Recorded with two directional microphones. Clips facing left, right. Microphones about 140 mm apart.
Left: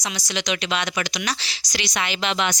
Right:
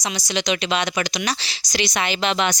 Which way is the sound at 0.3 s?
30° right (ahead or behind).